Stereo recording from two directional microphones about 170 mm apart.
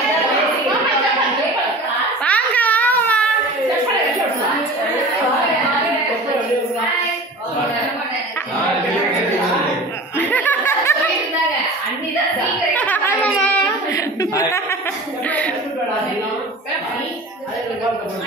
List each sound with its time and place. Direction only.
2.2 s baby cry: 10° left (ahead or behind)
10.1 s laughter: 10° left (ahead or behind)
12.7 s a sound: 10° left (ahead or behind)